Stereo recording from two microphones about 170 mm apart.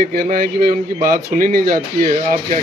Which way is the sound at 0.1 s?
60° right (ahead or behind).